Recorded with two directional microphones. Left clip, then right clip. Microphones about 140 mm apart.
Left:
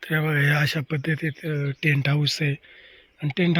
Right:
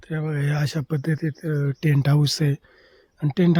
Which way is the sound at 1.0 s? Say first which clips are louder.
Left 1 dB; 50° right (ahead or behind).